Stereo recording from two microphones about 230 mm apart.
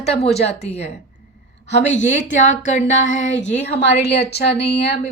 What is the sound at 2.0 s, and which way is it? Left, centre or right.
A woman's voice, left.